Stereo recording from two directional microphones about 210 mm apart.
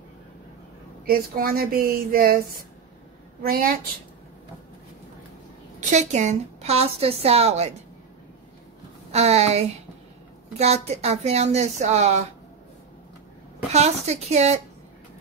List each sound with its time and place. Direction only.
1.0 s a woman's voice: 45° right (ahead or behind)
3.4 s a woman's voice: 45° right (ahead or behind)
5.8 s a woman's voice: 35° right (ahead or behind)
9.1 s a woman's voice: 30° right (ahead or behind)
13.7 s a woman's voice: 30° right (ahead or behind)